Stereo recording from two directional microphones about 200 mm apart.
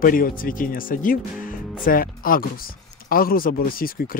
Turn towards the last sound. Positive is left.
turn(degrees=45)  # may be behind; listen again after turning